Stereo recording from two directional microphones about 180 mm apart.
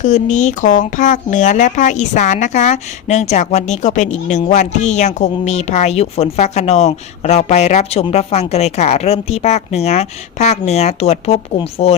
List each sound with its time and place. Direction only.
0.0 s speech: 45° left (ahead or behind)